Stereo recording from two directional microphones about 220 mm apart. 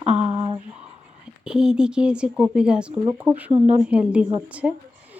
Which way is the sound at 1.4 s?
5° right (ahead or behind).